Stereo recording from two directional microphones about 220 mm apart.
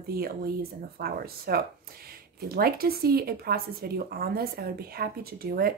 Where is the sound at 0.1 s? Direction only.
45° right (ahead or behind).